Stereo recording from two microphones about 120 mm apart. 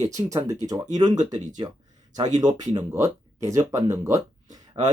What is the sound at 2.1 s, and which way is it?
Speech, 35° right (ahead or behind).